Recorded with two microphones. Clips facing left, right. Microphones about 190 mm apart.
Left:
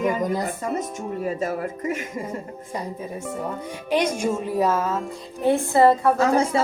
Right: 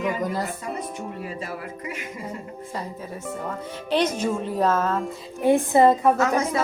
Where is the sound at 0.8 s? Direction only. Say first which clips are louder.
Left 4 dB; 45° left (ahead or behind).